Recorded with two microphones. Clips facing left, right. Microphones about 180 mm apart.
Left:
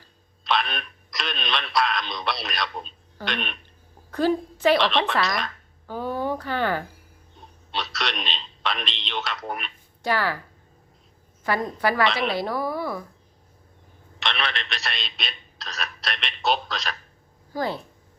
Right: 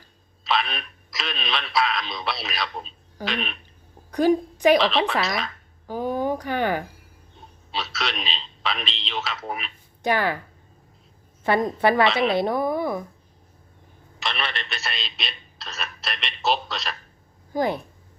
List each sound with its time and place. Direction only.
0.4 s a man's voice: centre (ahead or behind)
4.1 s a child's voice: 15° right (ahead or behind)
4.8 s a man's voice: centre (ahead or behind)
5.9 s speech: 15° right (ahead or behind)
7.7 s a man's voice: centre (ahead or behind)
10.0 s a woman's voice: 20° right (ahead or behind)
11.4 s a woman's voice: 25° right (ahead or behind)
12.0 s a man's voice: centre (ahead or behind)
12.3 s a woman's voice: 20° right (ahead or behind)
14.2 s a man's voice: centre (ahead or behind)
17.5 s speech: 20° right (ahead or behind)